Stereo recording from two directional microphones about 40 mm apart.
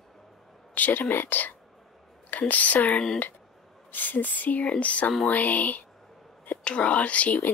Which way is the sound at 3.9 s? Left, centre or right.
Left.